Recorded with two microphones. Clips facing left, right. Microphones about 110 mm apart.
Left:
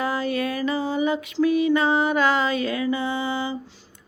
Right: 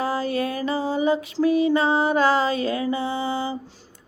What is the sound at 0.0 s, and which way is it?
Music, 35° right (ahead or behind).